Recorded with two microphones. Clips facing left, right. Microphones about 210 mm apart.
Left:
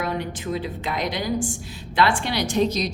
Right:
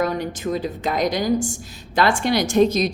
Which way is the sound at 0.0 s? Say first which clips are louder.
Right 4 dB; 40° right (ahead or behind).